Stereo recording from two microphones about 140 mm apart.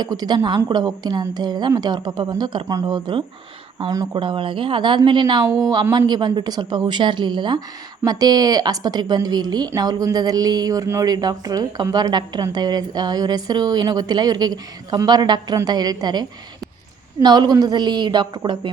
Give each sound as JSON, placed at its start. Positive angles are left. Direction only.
{"t": 0.0, "sound": "a woman's voice", "side_deg": -30}